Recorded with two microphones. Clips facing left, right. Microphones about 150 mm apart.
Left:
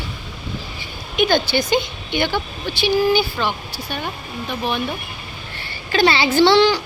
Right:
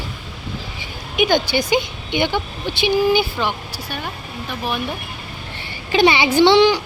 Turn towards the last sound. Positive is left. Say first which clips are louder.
# right 1 dB
turn(degrees=-20)  # may be behind; listen again after turning